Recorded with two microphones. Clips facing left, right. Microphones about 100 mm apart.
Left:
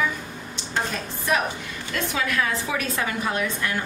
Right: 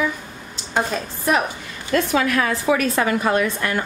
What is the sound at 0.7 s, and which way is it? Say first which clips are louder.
A woman's voice: right 5 dB; 60° right (ahead or behind).